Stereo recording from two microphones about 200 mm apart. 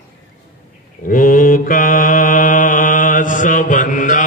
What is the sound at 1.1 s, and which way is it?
Mantra, 40° left (ahead or behind).